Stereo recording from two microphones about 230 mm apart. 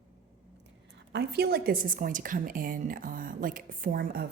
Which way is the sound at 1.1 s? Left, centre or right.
Right.